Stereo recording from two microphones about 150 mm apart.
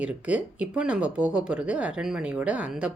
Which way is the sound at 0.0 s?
10° right (ahead or behind).